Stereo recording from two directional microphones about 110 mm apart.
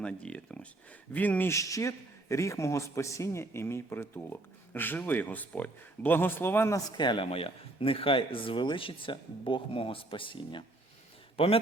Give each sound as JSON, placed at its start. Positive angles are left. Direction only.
{"t": 0.0, "sound": "speech", "side_deg": 10}
{"t": 6.7, "sound": "speech", "side_deg": 40}
{"t": 7.3, "sound": "speech", "side_deg": 60}